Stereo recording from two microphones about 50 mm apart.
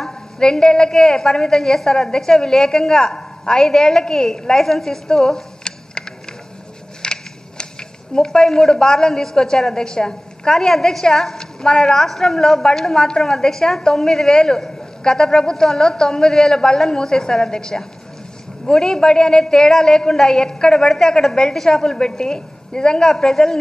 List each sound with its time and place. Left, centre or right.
0.4 s a woman's voice: centre
7.0 s a sound: centre
8.1 s a woman's voice: centre